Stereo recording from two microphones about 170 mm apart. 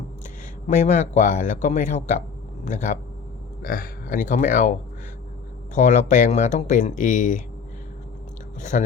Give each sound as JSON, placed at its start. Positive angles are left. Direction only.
{"t": 0.7, "sound": "speech", "side_deg": 50}
{"t": 5.7, "sound": "speech", "side_deg": 45}
{"t": 8.7, "sound": "speech", "side_deg": 50}